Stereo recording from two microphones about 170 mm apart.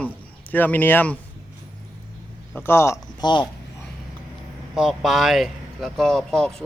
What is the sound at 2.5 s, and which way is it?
Speech, 15° left (ahead or behind).